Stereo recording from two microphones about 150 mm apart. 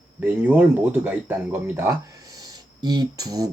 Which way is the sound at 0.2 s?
10° right (ahead or behind).